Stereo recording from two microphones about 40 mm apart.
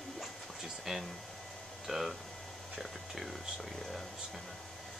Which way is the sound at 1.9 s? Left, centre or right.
Centre.